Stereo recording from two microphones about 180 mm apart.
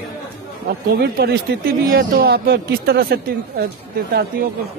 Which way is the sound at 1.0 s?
60° right (ahead or behind).